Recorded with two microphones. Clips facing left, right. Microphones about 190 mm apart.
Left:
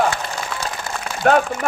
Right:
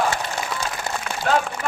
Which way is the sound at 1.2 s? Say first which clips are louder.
Left 6 dB; 60° left (ahead or behind).